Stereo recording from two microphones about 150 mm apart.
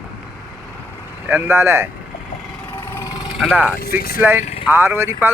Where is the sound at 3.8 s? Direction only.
90° left.